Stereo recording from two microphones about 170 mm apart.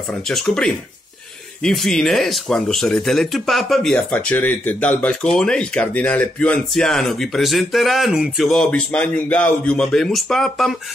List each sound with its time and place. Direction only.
0.3 s speech: 5° left (ahead or behind)